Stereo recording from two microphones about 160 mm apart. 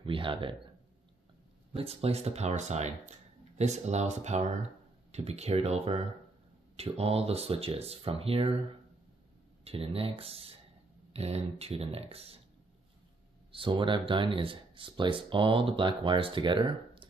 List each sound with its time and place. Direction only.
0.0 s speech: 35° right (ahead or behind)
1.7 s speech: 40° right (ahead or behind)
9.7 s speech: 35° right (ahead or behind)
13.5 s speech: 35° right (ahead or behind)